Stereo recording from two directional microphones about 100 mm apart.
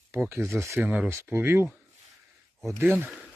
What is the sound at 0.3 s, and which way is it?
Speech, 25° right (ahead or behind).